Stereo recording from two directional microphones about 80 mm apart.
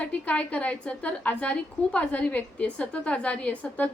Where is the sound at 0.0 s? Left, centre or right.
Centre.